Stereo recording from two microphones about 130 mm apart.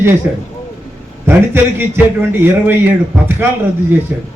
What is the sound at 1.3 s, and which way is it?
A man's voice, 15° right (ahead or behind).